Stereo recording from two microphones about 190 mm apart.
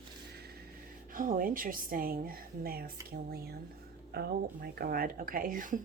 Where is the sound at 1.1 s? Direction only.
45° right (ahead or behind).